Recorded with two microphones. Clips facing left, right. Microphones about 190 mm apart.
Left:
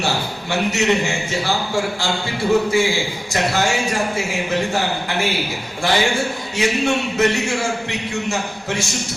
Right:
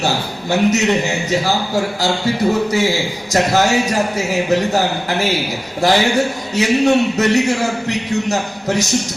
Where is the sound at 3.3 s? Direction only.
40° right (ahead or behind).